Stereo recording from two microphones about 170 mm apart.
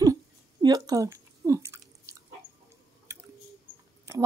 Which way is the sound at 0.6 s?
20° right (ahead or behind).